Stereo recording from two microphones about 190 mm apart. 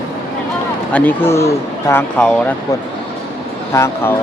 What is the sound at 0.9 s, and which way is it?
Speech, 10° left (ahead or behind).